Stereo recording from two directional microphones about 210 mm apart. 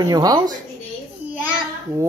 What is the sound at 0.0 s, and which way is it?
Speech, 20° right (ahead or behind).